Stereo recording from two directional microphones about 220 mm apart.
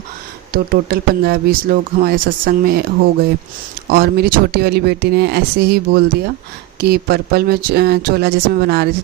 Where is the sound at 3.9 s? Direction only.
45° right (ahead or behind).